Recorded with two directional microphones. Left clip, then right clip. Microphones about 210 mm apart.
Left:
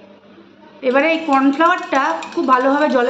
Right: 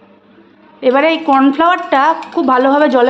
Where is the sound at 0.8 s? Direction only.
55° right (ahead or behind).